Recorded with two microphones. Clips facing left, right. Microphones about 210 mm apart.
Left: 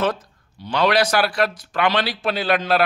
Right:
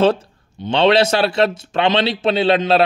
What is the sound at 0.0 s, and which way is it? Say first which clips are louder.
A man's voice: right 7 dB; 30° right (ahead or behind).